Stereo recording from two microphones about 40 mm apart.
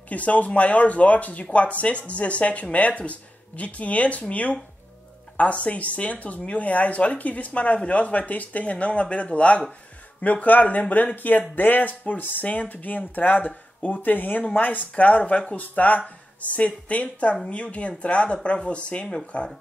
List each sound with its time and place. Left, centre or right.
0.1 s speech: left